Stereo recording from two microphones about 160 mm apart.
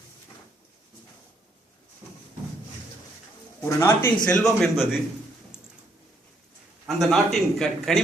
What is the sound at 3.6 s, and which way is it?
Speech, 20° left (ahead or behind).